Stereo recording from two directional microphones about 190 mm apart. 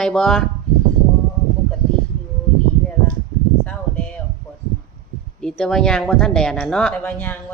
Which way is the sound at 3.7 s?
10° left (ahead or behind).